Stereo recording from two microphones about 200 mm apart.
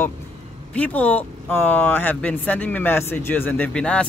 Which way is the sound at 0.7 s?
5° left (ahead or behind).